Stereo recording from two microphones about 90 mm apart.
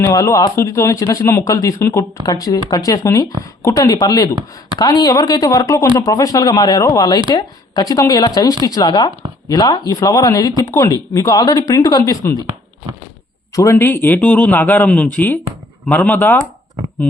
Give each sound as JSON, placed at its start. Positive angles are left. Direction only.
{"t": 0.0, "sound": "speech", "side_deg": 35}
{"t": 0.5, "sound": "speech", "side_deg": 30}
{"t": 13.5, "sound": "speech", "side_deg": 40}
{"t": 13.8, "sound": "speech", "side_deg": 20}